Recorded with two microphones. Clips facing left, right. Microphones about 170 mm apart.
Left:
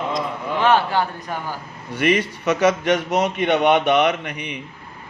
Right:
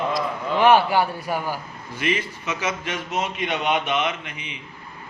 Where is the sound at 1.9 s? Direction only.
70° left (ahead or behind).